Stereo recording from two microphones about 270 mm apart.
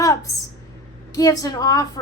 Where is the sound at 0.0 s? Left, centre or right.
Centre.